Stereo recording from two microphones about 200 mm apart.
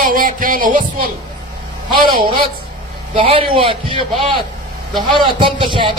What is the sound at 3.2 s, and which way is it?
A man's voice, 25° right (ahead or behind).